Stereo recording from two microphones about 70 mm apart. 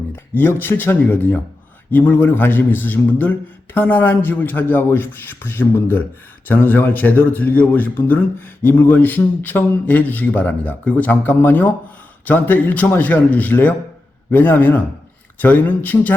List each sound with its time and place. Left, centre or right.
0.3 s a man's voice: left